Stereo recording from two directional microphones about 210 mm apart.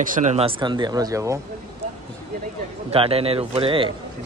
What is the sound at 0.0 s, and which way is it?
A man's voice, 35° right (ahead or behind).